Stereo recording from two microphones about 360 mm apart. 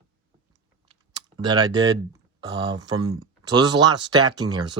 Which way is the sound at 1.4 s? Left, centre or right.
Centre.